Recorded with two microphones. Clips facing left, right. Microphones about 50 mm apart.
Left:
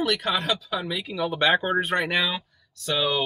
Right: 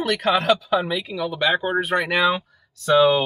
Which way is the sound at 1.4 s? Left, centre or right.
Centre.